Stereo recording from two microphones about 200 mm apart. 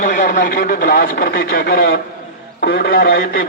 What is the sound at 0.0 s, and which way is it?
Speech, 45° left (ahead or behind).